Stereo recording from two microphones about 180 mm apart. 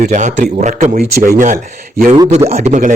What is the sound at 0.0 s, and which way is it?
A man's voice, 45° right (ahead or behind).